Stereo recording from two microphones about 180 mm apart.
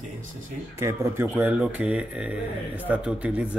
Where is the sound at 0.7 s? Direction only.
15° right (ahead or behind).